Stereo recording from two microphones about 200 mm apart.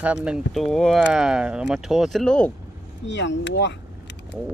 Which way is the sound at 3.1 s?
60° left (ahead or behind).